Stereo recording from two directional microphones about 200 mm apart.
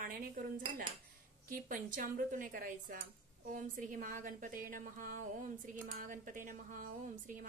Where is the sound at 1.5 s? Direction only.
40° right (ahead or behind).